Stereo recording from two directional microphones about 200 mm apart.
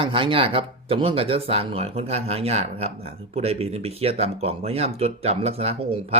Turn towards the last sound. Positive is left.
turn(degrees=-30)  # may be behind; listen again after turning